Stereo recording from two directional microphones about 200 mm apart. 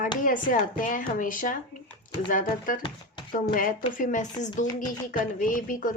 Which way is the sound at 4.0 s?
40° left (ahead or behind).